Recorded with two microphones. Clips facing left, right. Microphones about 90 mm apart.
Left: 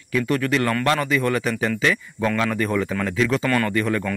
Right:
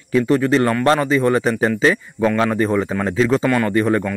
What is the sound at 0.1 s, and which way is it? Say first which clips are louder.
Speech: right 6 dB; 25° right (ahead or behind).